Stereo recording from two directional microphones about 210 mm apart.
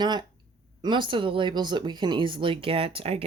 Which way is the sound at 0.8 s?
20° right (ahead or behind).